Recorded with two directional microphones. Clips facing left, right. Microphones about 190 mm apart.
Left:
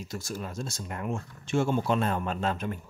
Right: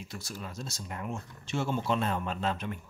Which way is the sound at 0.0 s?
45° left (ahead or behind).